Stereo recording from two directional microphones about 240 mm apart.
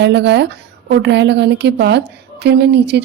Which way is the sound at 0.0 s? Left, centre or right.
Right.